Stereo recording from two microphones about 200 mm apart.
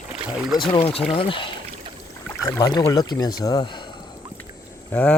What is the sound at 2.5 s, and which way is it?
Speech, 15° left (ahead or behind).